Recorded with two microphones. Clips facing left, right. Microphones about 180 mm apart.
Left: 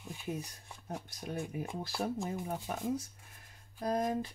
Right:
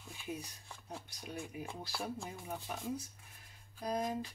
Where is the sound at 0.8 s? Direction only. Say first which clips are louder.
Left 6 dB; 50° left (ahead or behind).